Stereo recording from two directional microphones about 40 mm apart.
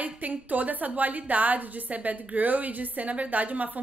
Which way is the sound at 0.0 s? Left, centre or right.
Right.